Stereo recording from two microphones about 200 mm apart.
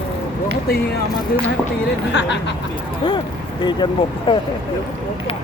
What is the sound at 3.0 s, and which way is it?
Speech, 20° left (ahead or behind).